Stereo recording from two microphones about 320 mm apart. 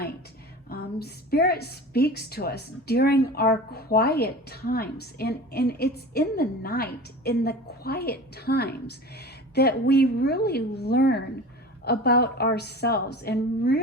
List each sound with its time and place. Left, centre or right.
0.7 s a woman's voice: left